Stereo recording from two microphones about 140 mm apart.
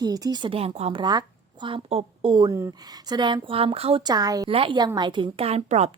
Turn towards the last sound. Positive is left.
turn(degrees=-50)  # may be behind; listen again after turning